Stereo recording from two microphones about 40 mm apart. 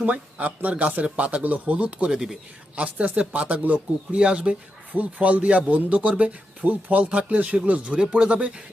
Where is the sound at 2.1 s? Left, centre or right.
Centre.